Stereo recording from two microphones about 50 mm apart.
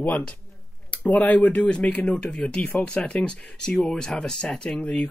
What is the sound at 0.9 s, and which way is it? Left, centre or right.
Speech, left.